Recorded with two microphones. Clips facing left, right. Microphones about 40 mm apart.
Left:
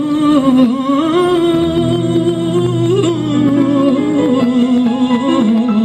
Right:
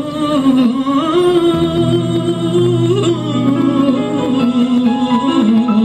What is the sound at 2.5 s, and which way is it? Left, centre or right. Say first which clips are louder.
Music: right 3 dB; right.